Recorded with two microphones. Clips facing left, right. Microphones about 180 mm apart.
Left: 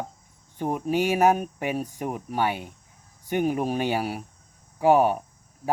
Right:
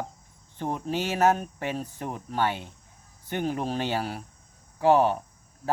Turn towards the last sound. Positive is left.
turn(degrees=15)  # may be behind; listen again after turning